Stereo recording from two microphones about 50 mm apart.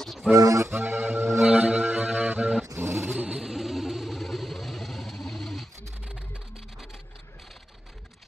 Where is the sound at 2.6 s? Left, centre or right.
Right.